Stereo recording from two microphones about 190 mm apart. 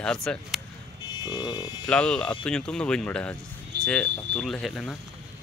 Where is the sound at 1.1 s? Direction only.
20° left (ahead or behind).